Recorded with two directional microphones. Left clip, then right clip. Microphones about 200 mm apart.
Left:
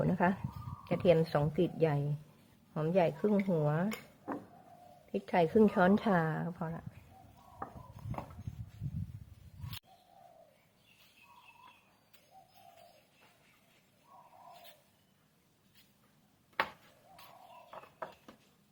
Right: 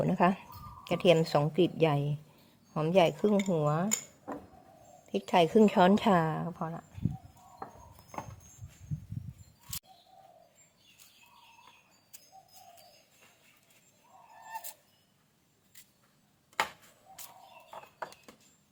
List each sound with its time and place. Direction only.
0.0 s a woman's voice: 20° right (ahead or behind)
5.1 s a woman's voice: 20° right (ahead or behind)